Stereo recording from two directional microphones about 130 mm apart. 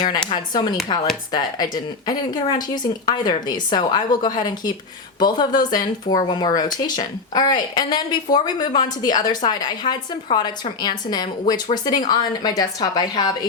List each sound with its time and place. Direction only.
0.3 s speech: 35° left (ahead or behind)